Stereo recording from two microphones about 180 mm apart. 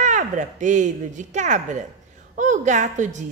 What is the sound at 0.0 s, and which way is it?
A woman's voice, 40° right (ahead or behind).